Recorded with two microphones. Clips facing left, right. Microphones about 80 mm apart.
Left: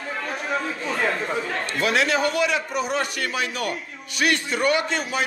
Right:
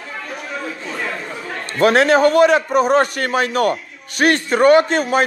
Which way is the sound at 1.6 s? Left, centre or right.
Right.